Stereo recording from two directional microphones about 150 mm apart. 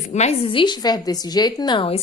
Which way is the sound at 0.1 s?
45° left (ahead or behind).